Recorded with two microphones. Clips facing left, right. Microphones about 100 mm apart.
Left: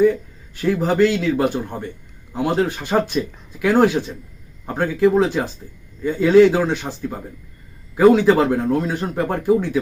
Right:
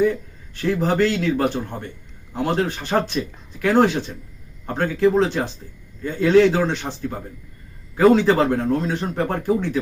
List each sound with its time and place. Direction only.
0.5 s speech: 10° left (ahead or behind)